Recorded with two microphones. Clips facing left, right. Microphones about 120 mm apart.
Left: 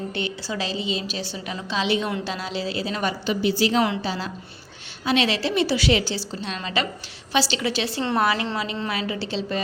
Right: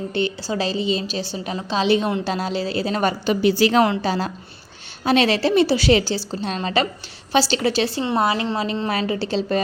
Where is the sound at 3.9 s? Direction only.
45° right (ahead or behind).